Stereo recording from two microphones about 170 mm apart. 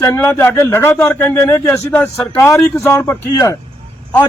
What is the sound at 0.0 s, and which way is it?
A man's voice, 15° left (ahead or behind).